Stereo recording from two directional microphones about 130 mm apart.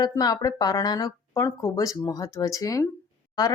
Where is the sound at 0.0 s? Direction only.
30° left (ahead or behind).